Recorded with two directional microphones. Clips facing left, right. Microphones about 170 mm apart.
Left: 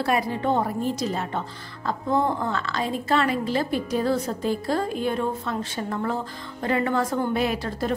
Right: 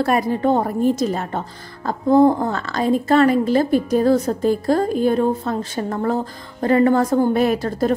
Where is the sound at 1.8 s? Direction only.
40° right (ahead or behind).